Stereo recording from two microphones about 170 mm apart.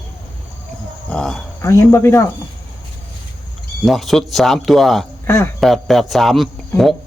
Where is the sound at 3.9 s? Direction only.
Centre (ahead or behind).